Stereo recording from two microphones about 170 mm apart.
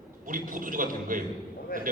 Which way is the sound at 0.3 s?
55° right (ahead or behind).